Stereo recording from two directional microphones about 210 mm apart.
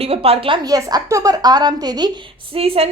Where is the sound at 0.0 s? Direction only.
30° right (ahead or behind).